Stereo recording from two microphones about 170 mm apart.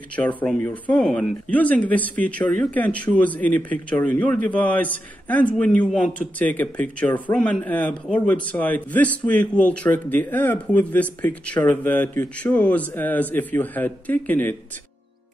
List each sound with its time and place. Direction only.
0.1 s a man's voice: 10° left (ahead or behind)